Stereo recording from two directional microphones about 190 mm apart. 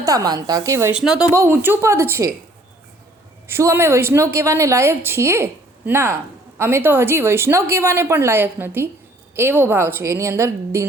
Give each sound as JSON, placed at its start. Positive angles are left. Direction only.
{"t": 0.0, "sound": "a woman's voice", "side_deg": -20}
{"t": 3.4, "sound": "a woman's voice", "side_deg": -15}